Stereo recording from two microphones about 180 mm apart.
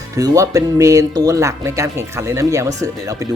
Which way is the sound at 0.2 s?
20° right (ahead or behind).